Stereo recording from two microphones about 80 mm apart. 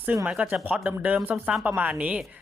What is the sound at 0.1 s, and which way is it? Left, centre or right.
A woman's voice, centre.